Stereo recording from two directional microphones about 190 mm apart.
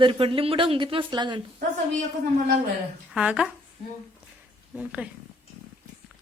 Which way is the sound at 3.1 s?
5° right (ahead or behind).